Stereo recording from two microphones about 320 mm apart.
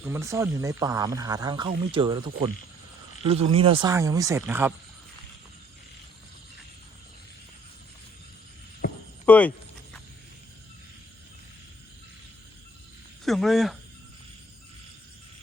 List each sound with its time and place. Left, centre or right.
0.0 s speech: centre
8.8 s hum: left
9.2 s speech: centre
13.2 s speech: centre